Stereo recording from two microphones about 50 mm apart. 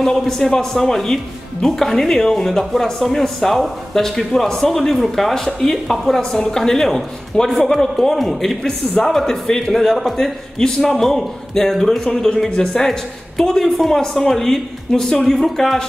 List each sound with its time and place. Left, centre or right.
0.0 s a man's voice: centre
15.2 s a man's voice: centre